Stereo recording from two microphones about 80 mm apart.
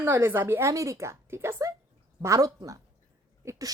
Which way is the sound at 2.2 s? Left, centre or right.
Right.